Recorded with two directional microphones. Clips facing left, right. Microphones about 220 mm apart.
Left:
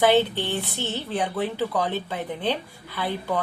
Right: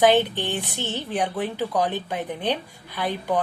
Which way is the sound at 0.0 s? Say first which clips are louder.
Right 1 dB; 15° right (ahead or behind).